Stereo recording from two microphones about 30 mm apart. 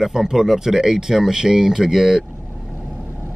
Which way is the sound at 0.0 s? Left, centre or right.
Centre.